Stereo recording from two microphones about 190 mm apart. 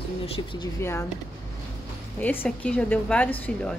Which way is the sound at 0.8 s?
15° left (ahead or behind).